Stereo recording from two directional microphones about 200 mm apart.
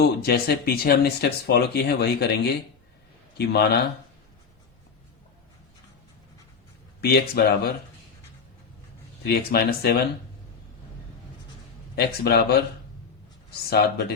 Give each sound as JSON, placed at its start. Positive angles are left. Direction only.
{"t": 0.2, "sound": "speech", "side_deg": 50}
{"t": 7.0, "sound": "speech", "side_deg": 50}
{"t": 9.2, "sound": "speech", "side_deg": 50}
{"t": 11.9, "sound": "speech", "side_deg": 55}
{"t": 13.7, "sound": "speech", "side_deg": 55}